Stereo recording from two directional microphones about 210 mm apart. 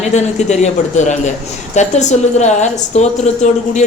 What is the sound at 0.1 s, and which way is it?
A woman's voice, 35° left (ahead or behind).